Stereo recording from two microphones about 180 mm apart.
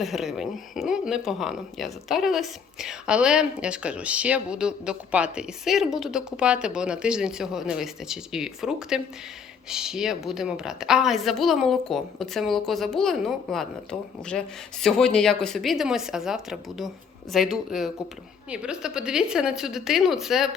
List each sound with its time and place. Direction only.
0.0 s speech: centre (ahead or behind)